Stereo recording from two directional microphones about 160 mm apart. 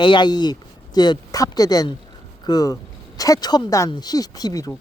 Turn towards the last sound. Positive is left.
turn(degrees=20)  # may be behind; listen again after turning